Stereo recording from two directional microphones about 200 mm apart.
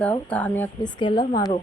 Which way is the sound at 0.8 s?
20° left (ahead or behind).